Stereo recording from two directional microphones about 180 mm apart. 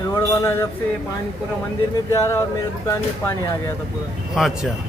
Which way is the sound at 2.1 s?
15° left (ahead or behind).